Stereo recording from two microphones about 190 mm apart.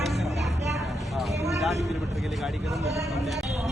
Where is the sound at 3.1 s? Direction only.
Centre (ahead or behind).